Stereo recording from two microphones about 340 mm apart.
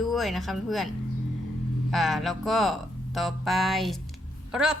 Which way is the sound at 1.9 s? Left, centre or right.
Centre.